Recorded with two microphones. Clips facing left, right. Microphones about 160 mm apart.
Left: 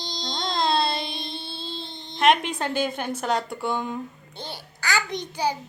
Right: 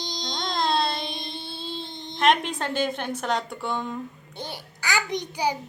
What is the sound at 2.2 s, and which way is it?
A woman's voice, centre (ahead or behind).